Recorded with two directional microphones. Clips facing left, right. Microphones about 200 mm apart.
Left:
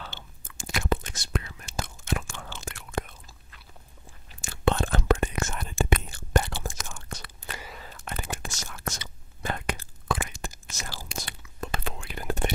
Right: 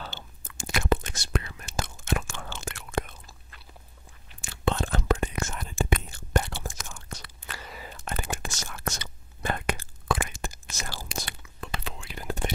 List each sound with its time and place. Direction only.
0.6 s whispering: 75° right (ahead or behind)
4.6 s whispering: 60° left (ahead or behind)
8.2 s whispering: 60° right (ahead or behind)
11.6 s whispering: 50° left (ahead or behind)